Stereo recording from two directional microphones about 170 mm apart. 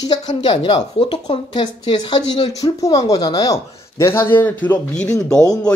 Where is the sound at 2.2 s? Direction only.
35° left (ahead or behind).